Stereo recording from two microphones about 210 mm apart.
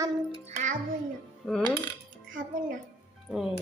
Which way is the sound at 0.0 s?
30° right (ahead or behind).